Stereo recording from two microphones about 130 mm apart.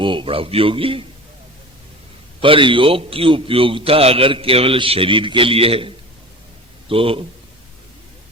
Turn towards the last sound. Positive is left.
turn(degrees=-45)  # may be behind; listen again after turning